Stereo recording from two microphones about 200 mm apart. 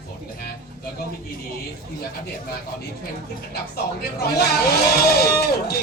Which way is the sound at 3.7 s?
50° left (ahead or behind).